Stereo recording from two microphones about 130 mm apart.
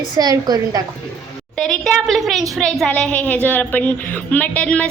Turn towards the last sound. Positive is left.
turn(degrees=10)  # may be behind; listen again after turning